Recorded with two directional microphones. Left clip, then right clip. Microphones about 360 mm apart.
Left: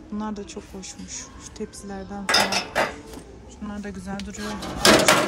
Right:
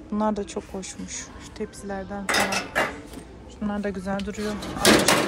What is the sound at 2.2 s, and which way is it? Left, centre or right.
Cutlery, left.